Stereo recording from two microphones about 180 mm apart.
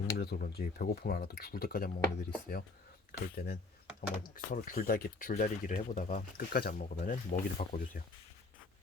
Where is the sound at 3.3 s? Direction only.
60° left (ahead or behind).